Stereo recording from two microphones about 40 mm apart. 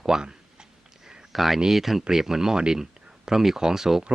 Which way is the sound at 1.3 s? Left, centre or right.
Centre.